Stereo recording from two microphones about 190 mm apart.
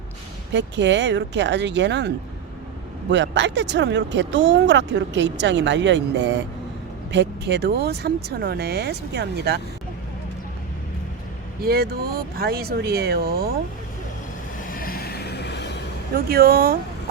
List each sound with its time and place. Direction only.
0.5 s speech: 70° right (ahead or behind)
11.6 s speech: 55° right (ahead or behind)
14.7 s vehicle: 50° left (ahead or behind)
16.1 s speech: 55° right (ahead or behind)